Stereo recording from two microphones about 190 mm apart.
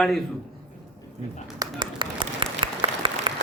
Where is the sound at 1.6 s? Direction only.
25° right (ahead or behind).